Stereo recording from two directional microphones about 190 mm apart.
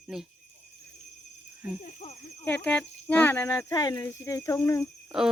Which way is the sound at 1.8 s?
35° left (ahead or behind).